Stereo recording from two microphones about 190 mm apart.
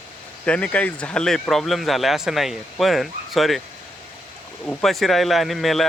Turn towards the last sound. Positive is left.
turn(degrees=0)  # may be behind; listen again after turning